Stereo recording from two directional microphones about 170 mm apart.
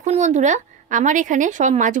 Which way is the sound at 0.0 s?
45° right (ahead or behind).